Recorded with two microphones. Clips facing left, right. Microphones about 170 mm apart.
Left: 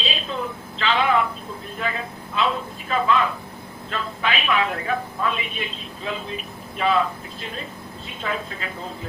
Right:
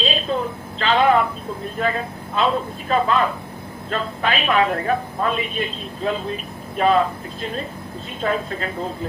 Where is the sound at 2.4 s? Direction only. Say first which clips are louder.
Right 4 dB; 45° right (ahead or behind).